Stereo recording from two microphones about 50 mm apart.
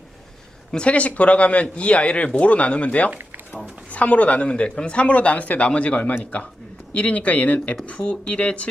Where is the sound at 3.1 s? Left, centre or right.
Right.